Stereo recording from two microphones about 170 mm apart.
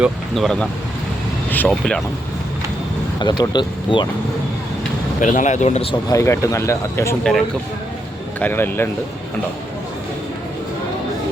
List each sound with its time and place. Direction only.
0.0 s speech: centre (ahead or behind)
3.2 s speech: 25° left (ahead or behind)
5.2 s speech: 45° left (ahead or behind)
5.9 s speech: 20° left (ahead or behind)
8.4 s speech: 10° left (ahead or behind)